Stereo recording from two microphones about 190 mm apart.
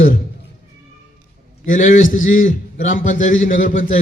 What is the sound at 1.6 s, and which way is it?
A man's voice, 45° left (ahead or behind).